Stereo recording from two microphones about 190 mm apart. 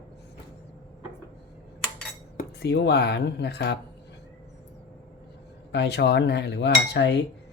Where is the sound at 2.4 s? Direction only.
55° left (ahead or behind).